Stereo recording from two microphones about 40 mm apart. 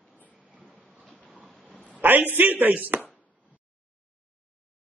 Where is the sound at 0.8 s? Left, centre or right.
Right.